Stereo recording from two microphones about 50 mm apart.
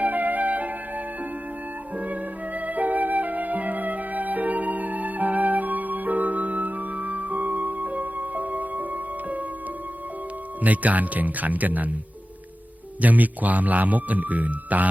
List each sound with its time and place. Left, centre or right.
0.0 s flute: right
2.6 s flute: right
10.6 s a man's voice: right
13.0 s a man's voice: right